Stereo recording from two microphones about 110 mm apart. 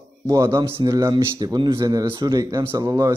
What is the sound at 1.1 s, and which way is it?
A man's voice, 40° right (ahead or behind).